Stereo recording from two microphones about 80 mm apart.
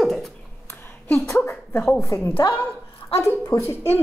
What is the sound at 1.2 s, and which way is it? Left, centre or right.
Speech, left.